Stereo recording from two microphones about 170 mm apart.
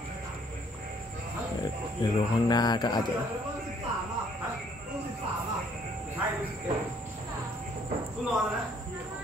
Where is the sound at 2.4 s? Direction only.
25° left (ahead or behind).